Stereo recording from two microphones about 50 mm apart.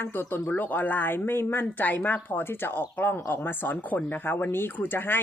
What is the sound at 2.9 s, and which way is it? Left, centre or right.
A woman's voice, left.